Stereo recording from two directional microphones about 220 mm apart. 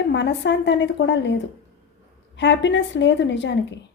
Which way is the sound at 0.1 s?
55° left (ahead or behind).